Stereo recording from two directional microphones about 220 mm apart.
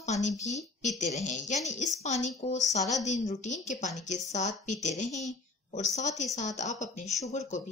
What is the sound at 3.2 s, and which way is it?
A woman's voice, 35° left (ahead or behind).